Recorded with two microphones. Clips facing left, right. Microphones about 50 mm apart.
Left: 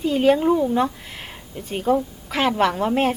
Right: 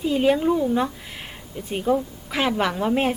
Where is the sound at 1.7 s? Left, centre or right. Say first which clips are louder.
Left 2 dB; centre.